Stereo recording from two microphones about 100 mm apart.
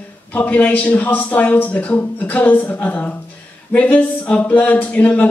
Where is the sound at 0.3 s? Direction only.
15° left (ahead or behind).